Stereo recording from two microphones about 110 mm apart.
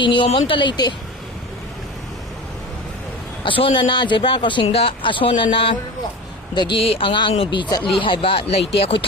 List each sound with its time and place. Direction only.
0.0 s a man's voice: 45° left (ahead or behind)
3.4 s a man's voice: 50° left (ahead or behind)